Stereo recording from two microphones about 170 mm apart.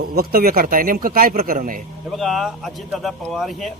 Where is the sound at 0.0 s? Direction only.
60° right (ahead or behind).